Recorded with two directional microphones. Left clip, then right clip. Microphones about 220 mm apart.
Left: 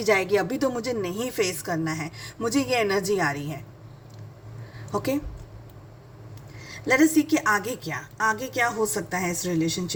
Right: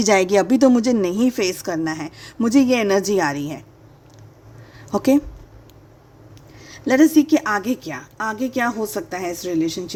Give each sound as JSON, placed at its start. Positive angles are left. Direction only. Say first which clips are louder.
{"t": 0.0, "sound": "a woman's voice", "louder": "right 6 dB", "side_deg": -45}
{"t": 4.9, "sound": "a woman's voice", "louder": "right 9 dB", "side_deg": -45}
{"t": 6.7, "sound": "a woman's voice", "louder": "right 5 dB", "side_deg": -45}